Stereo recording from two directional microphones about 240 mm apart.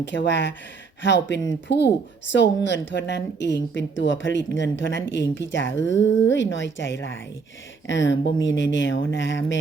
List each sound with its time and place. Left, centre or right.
0.0 s a woman's voice: left